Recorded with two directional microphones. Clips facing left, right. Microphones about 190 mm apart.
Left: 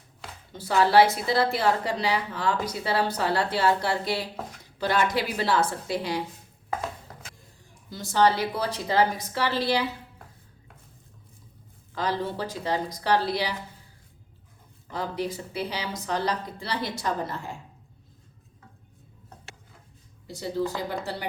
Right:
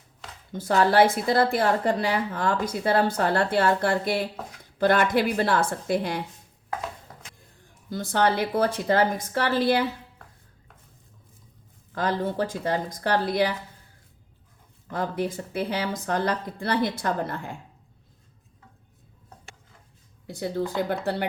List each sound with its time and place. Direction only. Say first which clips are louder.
0.5 s a woman's voice: even; 50° right (ahead or behind)
7.9 s a woman's voice: left 1 dB; 55° right (ahead or behind)
11.9 s a woman's voice: right 3 dB; 50° right (ahead or behind)
14.8 s a woman's voice: right 2 dB; 50° right (ahead or behind)
20.2 s speech: right 1 dB; 55° right (ahead or behind)